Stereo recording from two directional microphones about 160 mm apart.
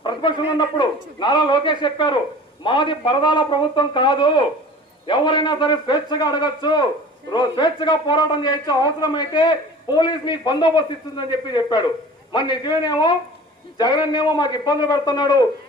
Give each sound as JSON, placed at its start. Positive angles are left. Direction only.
{"t": 0.0, "sound": "a man's voice", "side_deg": 30}